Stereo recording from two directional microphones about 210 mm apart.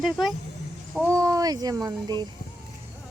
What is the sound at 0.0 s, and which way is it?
Speech, centre (ahead or behind).